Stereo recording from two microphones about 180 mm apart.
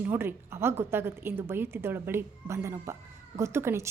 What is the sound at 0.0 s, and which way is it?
A woman's voice, 10° right (ahead or behind).